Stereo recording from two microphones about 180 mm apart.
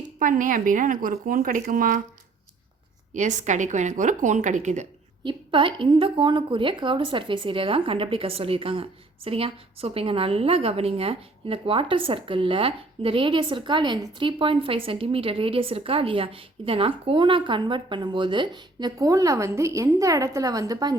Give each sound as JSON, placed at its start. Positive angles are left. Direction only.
{"t": 0.2, "sound": "a woman's voice", "side_deg": -45}
{"t": 3.1, "sound": "speech", "side_deg": -40}
{"t": 5.2, "sound": "speech", "side_deg": -25}